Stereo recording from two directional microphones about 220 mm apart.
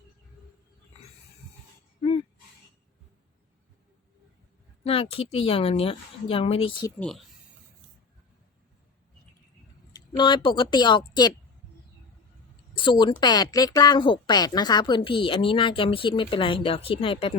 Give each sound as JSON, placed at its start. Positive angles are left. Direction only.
{"t": 4.9, "sound": "speech", "side_deg": 25}
{"t": 7.0, "sound": "speech", "side_deg": 0}
{"t": 10.1, "sound": "speech", "side_deg": 20}
{"t": 12.7, "sound": "speech", "side_deg": 20}